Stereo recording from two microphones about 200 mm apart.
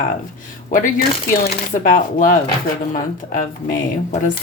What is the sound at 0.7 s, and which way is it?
Speech, 40° left (ahead or behind).